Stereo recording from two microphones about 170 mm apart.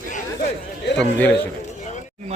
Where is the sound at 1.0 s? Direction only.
5° left (ahead or behind).